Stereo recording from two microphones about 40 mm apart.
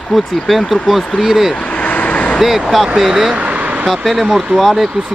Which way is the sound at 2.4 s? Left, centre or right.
Centre.